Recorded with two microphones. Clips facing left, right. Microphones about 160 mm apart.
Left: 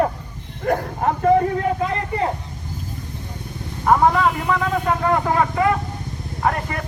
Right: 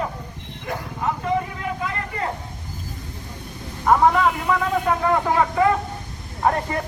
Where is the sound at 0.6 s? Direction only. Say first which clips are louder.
Left 6 dB; 50° left (ahead or behind).